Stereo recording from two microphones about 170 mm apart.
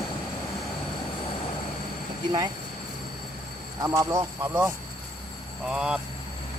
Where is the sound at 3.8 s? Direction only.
20° right (ahead or behind).